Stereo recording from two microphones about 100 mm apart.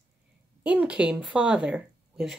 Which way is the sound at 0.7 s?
10° right (ahead or behind).